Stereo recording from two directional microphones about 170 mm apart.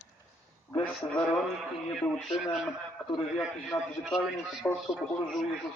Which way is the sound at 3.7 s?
20° left (ahead or behind).